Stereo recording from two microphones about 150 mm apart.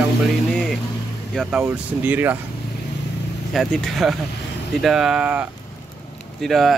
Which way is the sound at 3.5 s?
Centre (ahead or behind).